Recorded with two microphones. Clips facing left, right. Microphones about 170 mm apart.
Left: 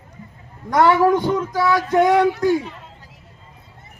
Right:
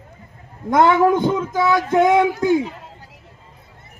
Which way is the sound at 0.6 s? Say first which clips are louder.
Right 1 dB; 20° right (ahead or behind).